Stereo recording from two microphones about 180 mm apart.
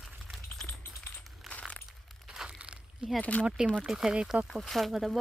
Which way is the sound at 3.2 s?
10° left (ahead or behind).